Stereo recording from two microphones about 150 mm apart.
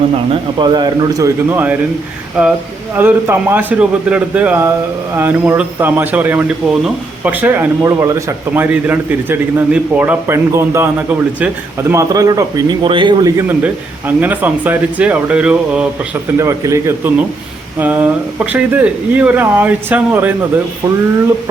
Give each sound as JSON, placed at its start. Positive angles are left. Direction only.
{"t": 0.6, "sound": "a man's voice", "side_deg": -30}
{"t": 7.9, "sound": "a man's voice", "side_deg": -20}
{"t": 11.9, "sound": "a man's voice", "side_deg": -25}
{"t": 16.4, "sound": "a man's voice", "side_deg": -20}